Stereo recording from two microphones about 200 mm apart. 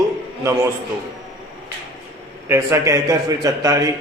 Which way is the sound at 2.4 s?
15° right (ahead or behind).